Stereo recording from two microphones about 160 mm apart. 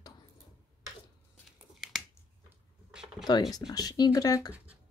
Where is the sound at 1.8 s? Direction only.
Centre (ahead or behind).